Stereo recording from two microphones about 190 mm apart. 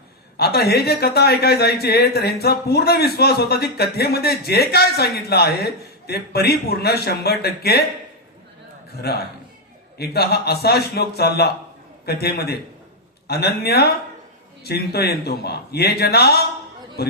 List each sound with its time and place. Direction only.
0.3 s speech: 55° left (ahead or behind)
9.0 s speech: 55° left (ahead or behind)